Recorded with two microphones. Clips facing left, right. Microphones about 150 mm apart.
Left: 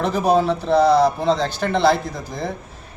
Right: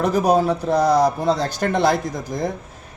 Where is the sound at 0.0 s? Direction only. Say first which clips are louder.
Right 1 dB; 10° right (ahead or behind).